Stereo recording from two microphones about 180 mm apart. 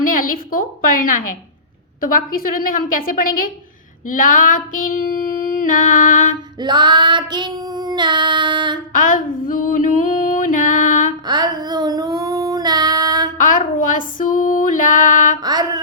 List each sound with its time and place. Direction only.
0.0 s a sound: 50° left (ahead or behind)
2.0 s a woman's voice: 50° left (ahead or behind)
4.1 s child singing: 50° left (ahead or behind)
6.6 s child singing: 25° right (ahead or behind)
8.9 s music: 50° left (ahead or behind)
11.3 s child singing: 25° right (ahead or behind)
13.4 s female singing: 45° left (ahead or behind)
15.4 s a sound: 20° right (ahead or behind)